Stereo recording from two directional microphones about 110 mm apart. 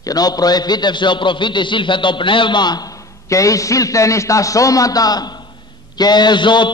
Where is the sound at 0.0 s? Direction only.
35° left (ahead or behind).